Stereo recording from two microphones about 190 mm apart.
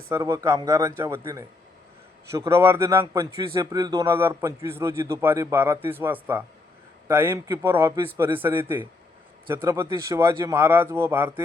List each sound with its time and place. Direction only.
0.1 s a man's voice: 15° right (ahead or behind)